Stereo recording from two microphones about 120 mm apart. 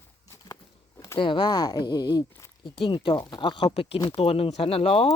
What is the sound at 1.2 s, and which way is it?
Speech, 40° left (ahead or behind).